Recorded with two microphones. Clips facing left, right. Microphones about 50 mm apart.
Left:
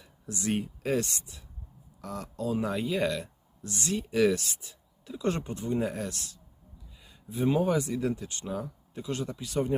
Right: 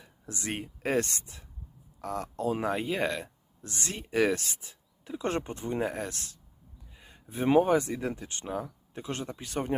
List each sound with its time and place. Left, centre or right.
0.0 s speech: right